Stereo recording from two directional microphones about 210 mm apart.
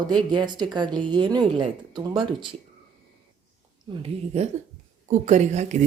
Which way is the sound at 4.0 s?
30° right (ahead or behind).